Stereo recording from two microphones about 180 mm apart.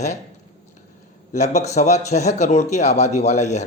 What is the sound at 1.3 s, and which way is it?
Speech, 40° left (ahead or behind).